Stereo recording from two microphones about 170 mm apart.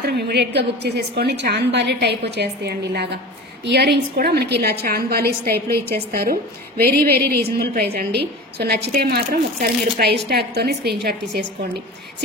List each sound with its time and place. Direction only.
0.0 s a woman's voice: 75° right (ahead or behind)